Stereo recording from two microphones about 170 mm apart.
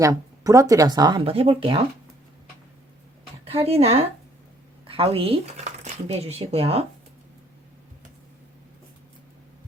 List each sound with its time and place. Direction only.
0.0 s speech: 20° right (ahead or behind)
3.4 s speech: 35° right (ahead or behind)